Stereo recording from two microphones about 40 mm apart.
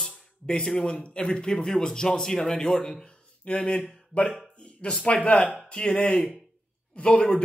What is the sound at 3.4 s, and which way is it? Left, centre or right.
Speech, left.